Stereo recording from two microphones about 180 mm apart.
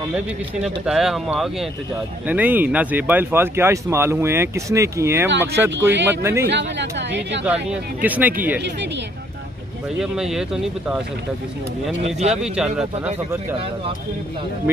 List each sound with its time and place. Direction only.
0.7 s speech: centre (ahead or behind)
5.8 s speech: 85° right
6.0 s speech: 15° right (ahead or behind)
6.4 s speech: 75° right (ahead or behind)
7.4 s speech: 5° right (ahead or behind)
9.9 s speech: 5° right (ahead or behind)
12.3 s speech: 5° right (ahead or behind)